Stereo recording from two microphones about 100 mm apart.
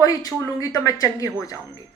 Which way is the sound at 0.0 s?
35° left (ahead or behind).